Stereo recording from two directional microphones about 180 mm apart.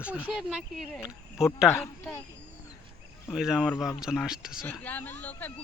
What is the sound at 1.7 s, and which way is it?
Speech, 15° left (ahead or behind).